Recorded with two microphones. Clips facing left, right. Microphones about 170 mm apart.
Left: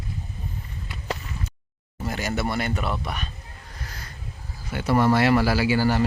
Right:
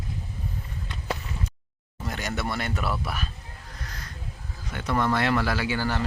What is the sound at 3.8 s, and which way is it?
Owl, 5° left (ahead or behind).